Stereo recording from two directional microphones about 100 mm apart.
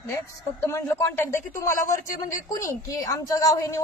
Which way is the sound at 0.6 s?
30° left (ahead or behind).